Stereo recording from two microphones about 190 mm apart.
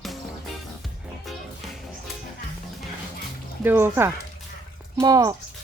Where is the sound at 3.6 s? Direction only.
10° right (ahead or behind).